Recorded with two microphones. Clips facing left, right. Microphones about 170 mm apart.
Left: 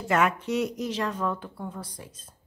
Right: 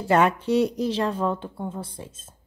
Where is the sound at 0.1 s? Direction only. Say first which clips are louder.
Right 5 dB; 30° right (ahead or behind).